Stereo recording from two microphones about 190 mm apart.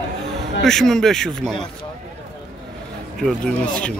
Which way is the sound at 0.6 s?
Centre (ahead or behind).